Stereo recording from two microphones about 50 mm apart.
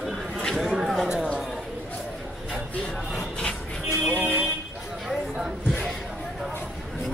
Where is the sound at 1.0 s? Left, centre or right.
Centre.